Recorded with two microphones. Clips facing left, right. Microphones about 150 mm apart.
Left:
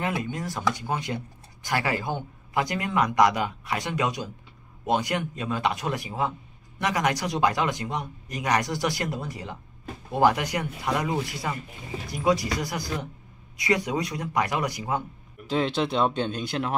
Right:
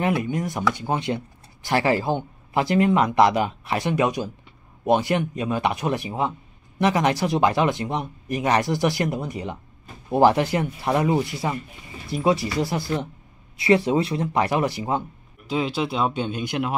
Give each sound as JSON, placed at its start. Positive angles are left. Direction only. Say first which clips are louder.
{"t": 0.2, "sound": "speech", "louder": "right 4 dB", "side_deg": -20}
{"t": 15.4, "sound": "speech", "louder": "right 1 dB", "side_deg": -5}